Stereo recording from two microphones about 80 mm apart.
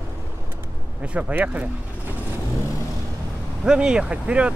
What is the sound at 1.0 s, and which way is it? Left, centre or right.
Speech, centre.